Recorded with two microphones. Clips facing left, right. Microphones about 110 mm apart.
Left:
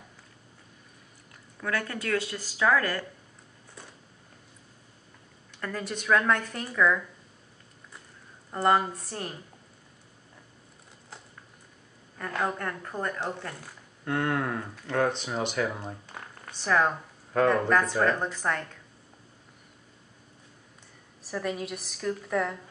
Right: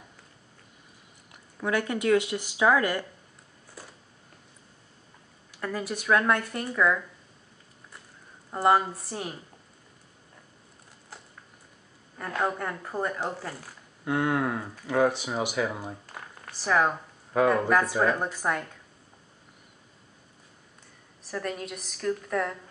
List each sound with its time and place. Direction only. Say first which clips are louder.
1.3 s speech: right 4 dB; 20° right (ahead or behind)
3.8 s a sound: right 2 dB; 5° right (ahead or behind)
5.5 s speech: right 2 dB; 5° right (ahead or behind)
8.5 s speech: right 1 dB; 5° right (ahead or behind)
12.2 s speech: right 1 dB; 5° right (ahead or behind)
21.2 s a woman's voice: left 1 dB; centre (ahead or behind)